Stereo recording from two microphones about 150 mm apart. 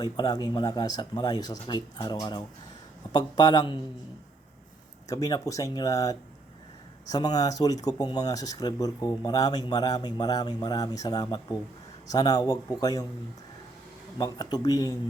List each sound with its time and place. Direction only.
0.0 s speech: 25° left (ahead or behind)
5.0 s speech: 25° left (ahead or behind)
14.2 s speech: 25° left (ahead or behind)